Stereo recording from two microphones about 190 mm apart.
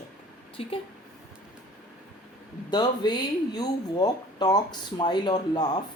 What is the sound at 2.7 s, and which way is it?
Speech, 20° left (ahead or behind).